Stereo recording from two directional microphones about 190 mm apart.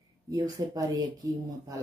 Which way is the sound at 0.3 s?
20° right (ahead or behind).